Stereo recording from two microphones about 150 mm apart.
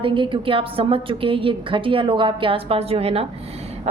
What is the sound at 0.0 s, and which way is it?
A woman's voice, 35° right (ahead or behind).